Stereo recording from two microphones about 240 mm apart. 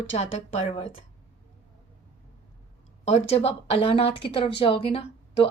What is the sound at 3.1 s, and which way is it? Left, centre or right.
A woman's voice, left.